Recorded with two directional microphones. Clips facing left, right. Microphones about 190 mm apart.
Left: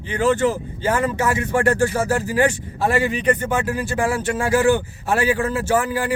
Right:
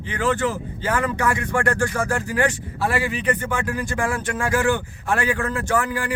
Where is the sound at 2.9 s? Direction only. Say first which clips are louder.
Left 5 dB; 40° left (ahead or behind).